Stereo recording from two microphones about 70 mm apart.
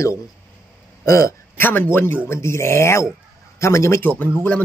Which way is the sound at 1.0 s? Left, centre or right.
Left.